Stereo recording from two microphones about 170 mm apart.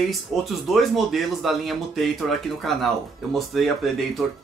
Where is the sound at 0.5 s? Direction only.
Centre (ahead or behind).